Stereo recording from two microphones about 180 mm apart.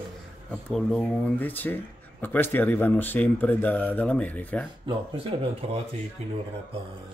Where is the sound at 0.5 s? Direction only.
Centre (ahead or behind).